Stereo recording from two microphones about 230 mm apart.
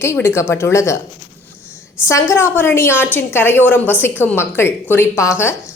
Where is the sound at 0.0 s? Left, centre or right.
Centre.